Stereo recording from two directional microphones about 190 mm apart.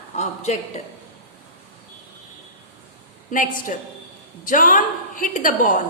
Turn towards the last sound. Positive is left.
turn(degrees=45)  # may be behind; listen again after turning